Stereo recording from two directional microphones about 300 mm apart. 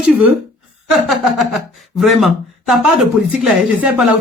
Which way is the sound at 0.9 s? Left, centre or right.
Centre.